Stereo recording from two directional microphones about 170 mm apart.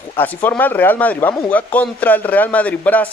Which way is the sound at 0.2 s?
10° left (ahead or behind).